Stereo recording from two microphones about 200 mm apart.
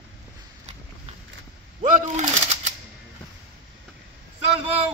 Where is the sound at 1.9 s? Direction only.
40° right (ahead or behind).